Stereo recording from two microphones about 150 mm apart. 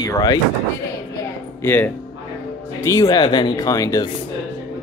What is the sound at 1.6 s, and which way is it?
Speech, 15° left (ahead or behind).